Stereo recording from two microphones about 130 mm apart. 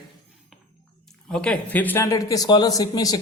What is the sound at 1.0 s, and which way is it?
Speech, 5° left (ahead or behind).